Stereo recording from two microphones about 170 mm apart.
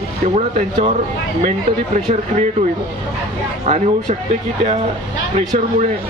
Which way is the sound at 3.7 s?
45° right (ahead or behind).